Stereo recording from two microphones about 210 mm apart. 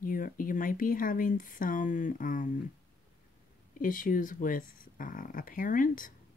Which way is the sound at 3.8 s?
40° left (ahead or behind).